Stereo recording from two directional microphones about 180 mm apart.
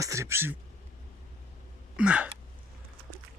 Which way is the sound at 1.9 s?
5° right (ahead or behind).